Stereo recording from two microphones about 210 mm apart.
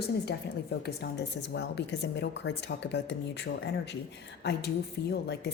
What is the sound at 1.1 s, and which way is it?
Speech, 55° left (ahead or behind).